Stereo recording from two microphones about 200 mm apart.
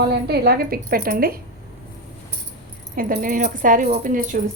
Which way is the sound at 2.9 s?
45° right (ahead or behind).